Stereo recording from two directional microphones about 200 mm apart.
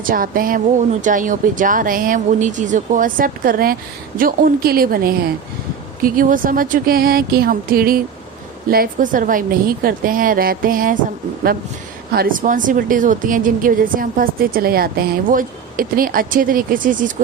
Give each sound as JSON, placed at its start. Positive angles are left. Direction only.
{"t": 0.0, "sound": "a woman's voice", "side_deg": -45}
{"t": 12.1, "sound": "a woman's voice", "side_deg": -45}